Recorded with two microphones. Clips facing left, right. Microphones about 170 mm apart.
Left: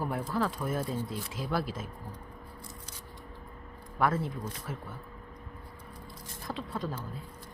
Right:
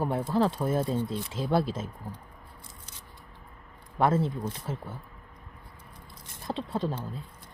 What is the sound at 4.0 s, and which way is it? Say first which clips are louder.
Speech: right 4 dB; 25° right (ahead or behind).